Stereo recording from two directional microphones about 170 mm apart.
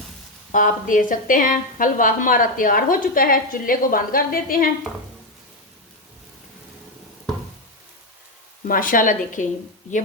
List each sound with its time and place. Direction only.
0.5 s a woman's voice: 50° left (ahead or behind)
8.6 s a woman's voice: 55° left (ahead or behind)